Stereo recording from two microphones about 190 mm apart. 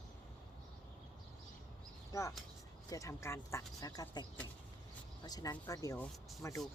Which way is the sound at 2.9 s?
15° left (ahead or behind).